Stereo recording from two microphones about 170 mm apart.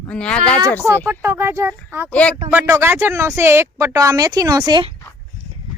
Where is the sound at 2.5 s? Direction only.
15° right (ahead or behind).